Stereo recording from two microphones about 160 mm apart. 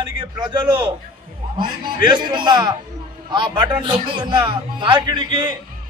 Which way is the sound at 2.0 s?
30° right (ahead or behind).